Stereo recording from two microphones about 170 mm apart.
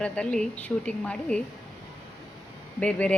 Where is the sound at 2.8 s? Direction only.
5° left (ahead or behind).